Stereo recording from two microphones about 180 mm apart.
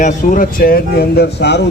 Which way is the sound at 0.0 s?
45° left (ahead or behind).